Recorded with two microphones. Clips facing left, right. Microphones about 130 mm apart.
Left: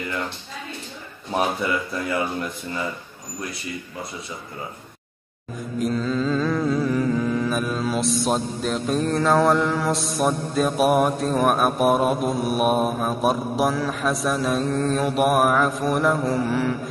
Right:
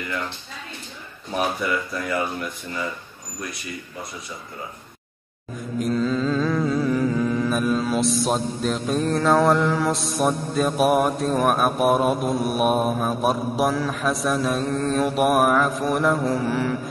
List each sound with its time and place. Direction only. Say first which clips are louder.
1.6 s speech: even; 25° left (ahead or behind)
5.8 s mantra: right 1 dB; centre (ahead or behind)